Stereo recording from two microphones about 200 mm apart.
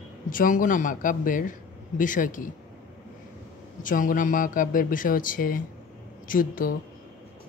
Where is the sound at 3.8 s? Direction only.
40° left (ahead or behind).